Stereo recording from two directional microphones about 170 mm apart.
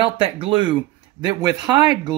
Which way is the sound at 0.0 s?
30° right (ahead or behind).